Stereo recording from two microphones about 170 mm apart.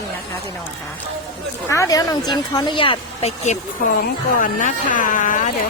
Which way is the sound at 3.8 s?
55° left (ahead or behind).